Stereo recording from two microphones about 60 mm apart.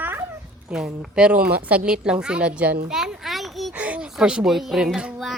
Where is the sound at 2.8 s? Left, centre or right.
Centre.